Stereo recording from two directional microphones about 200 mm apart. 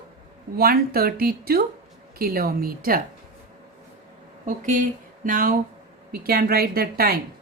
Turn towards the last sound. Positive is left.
turn(degrees=-50)  # may be behind; listen again after turning